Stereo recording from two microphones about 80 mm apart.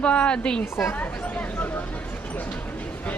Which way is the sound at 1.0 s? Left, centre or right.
Centre.